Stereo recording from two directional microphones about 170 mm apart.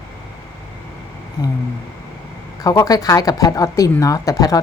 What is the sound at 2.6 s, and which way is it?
Speech, 20° left (ahead or behind).